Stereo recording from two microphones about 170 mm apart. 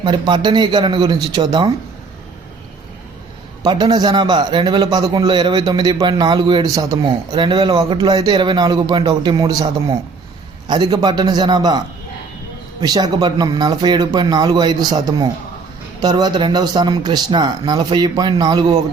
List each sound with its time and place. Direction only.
0.0 s a man's voice: 25° right (ahead or behind)
3.6 s a man's voice: 25° right (ahead or behind)
12.8 s a man's voice: 25° right (ahead or behind)